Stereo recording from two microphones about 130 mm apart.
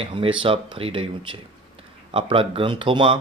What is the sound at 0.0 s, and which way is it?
Speech, 45° right (ahead or behind).